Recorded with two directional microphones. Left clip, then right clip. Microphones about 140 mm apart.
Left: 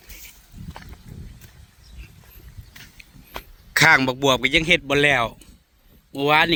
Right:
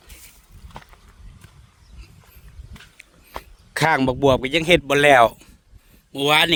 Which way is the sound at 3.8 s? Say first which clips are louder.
Left 3 dB; 40° right (ahead or behind).